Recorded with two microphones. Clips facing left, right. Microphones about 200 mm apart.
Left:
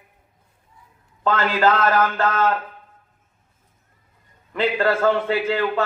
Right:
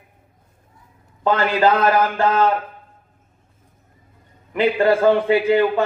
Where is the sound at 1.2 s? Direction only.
15° right (ahead or behind).